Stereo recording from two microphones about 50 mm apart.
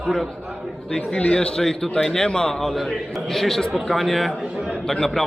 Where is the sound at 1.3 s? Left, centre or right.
Centre.